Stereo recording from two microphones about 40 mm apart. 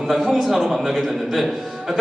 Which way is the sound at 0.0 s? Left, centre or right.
Centre.